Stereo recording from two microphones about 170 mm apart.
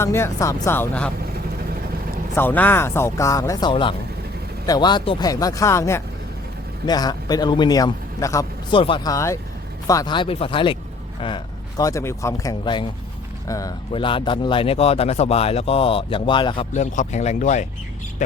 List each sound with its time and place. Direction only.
0.0 s speech: 15° left (ahead or behind)
2.3 s speech: 10° left (ahead or behind)
8.7 s speech: 30° left (ahead or behind)
9.1 s speech: 15° left (ahead or behind)
13.9 s speech: 30° left (ahead or behind)
16.7 s speech: 45° left (ahead or behind)